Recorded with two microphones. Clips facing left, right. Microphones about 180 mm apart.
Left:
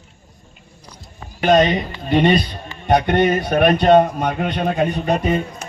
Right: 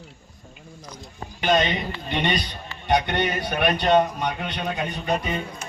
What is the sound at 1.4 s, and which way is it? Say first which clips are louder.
A man's voice: left 7 dB; 45° left (ahead or behind).